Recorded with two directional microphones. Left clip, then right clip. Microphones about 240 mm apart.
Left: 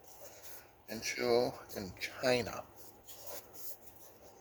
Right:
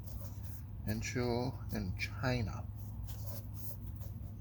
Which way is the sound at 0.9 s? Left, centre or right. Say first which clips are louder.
Left 6 dB; left.